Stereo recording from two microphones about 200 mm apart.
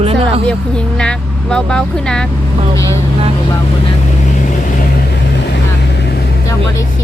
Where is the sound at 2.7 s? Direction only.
15° left (ahead or behind).